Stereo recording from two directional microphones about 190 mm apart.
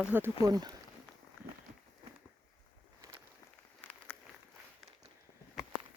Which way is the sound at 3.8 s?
5° left (ahead or behind).